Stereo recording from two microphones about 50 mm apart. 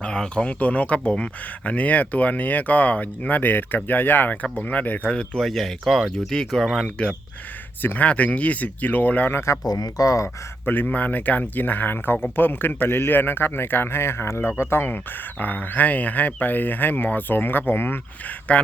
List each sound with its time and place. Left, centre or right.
0.0 s a sound: centre
0.4 s speech: left
5.4 s speech: centre
6.1 s speech: centre
7.8 s speech: left
8.0 s speech: left
10.7 s a man's voice: left
14.8 s speech: left
18.5 s speech: left